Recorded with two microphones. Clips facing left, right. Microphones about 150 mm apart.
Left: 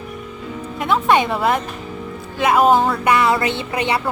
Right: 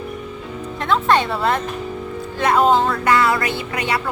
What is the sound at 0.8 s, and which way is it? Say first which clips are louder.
Speech: left 1 dB; 10° left (ahead or behind).